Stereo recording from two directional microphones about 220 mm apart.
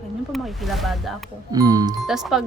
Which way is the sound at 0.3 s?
Centre (ahead or behind).